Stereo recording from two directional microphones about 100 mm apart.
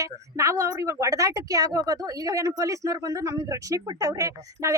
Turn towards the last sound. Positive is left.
turn(degrees=-35)  # may be behind; listen again after turning